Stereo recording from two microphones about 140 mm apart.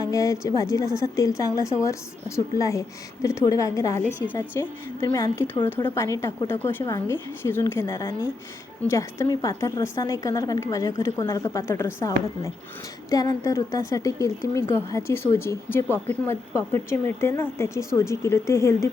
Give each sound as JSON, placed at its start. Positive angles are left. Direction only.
{"t": 0.0, "sound": "a woman's voice", "side_deg": 20}